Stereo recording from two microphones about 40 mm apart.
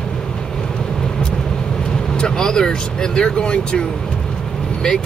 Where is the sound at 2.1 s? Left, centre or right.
Centre.